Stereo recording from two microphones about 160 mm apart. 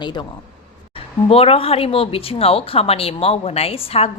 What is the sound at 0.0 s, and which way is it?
A woman's voice, 30° left (ahead or behind).